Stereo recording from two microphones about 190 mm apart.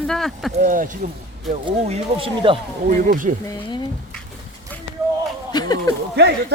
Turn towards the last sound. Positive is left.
turn(degrees=-60)  # may be behind; listen again after turning